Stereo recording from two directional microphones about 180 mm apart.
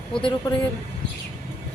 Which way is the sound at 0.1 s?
30° left (ahead or behind).